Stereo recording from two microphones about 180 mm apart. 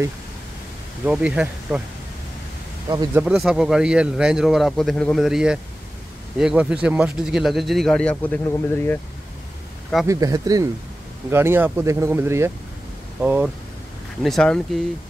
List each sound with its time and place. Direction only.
1.0 s speech: 5° right (ahead or behind)
3.2 s speech: 5° right (ahead or behind); by 9.0 s 10° left (ahead or behind)
10.0 s speech: 20° right (ahead or behind)
14.2 s speech: 5° left (ahead or behind)